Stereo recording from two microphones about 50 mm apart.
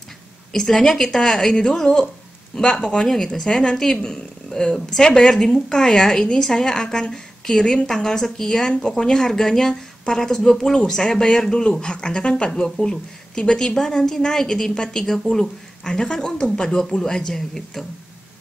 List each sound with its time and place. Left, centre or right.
0.5 s a woman's voice: centre